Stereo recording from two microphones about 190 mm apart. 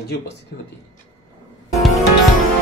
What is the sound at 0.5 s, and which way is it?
Speech, 55° left (ahead or behind).